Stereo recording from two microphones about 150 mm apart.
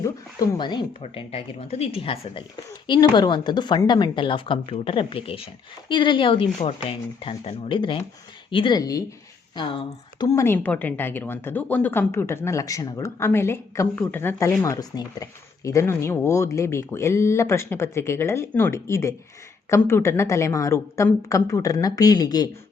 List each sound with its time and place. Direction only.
0.0 s a woman's voice: 25° left (ahead or behind)
9.6 s speech: 35° left (ahead or behind)
10.3 s a woman's voice: 15° left (ahead or behind)